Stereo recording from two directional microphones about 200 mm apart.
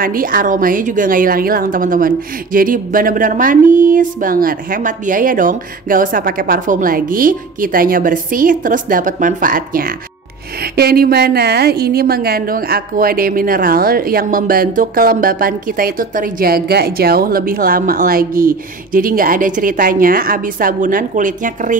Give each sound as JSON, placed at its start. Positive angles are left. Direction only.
{"t": 0.0, "sound": "a woman's voice", "side_deg": -45}